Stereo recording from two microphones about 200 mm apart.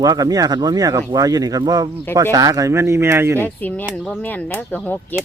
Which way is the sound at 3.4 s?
10° left (ahead or behind).